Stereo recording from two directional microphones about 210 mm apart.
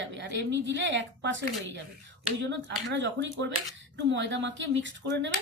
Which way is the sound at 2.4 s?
55° right (ahead or behind).